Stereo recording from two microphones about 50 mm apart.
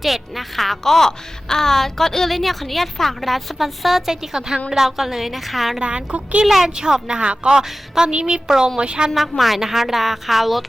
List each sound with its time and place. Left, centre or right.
0.0 s a woman's voice: centre
5.8 s a woman's voice: right
6.4 s a woman's voice: centre
9.4 s a woman's voice: centre